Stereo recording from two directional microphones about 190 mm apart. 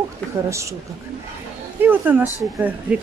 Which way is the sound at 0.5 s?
15° right (ahead or behind).